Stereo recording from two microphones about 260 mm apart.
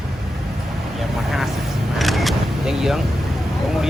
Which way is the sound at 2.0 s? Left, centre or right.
Centre.